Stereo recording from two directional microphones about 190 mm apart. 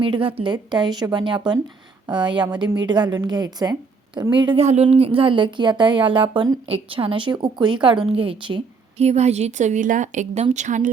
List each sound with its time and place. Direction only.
0.0 s a woman's voice: 25° right (ahead or behind)